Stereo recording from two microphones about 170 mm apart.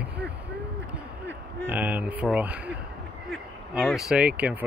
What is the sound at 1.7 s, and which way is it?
Speech, 10° right (ahead or behind).